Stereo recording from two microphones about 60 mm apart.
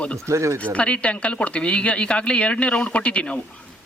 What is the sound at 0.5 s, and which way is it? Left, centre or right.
Speech, left.